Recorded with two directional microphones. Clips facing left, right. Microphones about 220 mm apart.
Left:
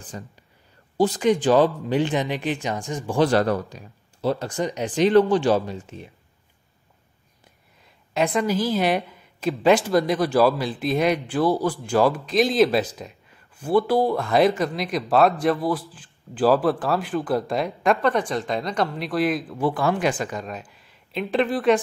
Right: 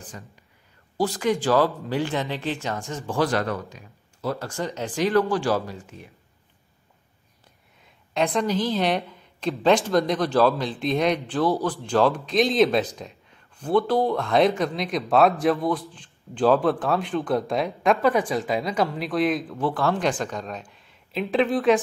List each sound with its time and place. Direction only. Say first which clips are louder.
0.1 s speech: left 7 dB; 30° left (ahead or behind)
0.9 s speech: left 4 dB; 20° left (ahead or behind)
3.3 s speech: left 5 dB; 35° left (ahead or behind)
7.8 s a woman's voice: left 1 dB; centre (ahead or behind)